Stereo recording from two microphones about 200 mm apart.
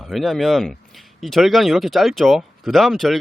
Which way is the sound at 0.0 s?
Centre (ahead or behind).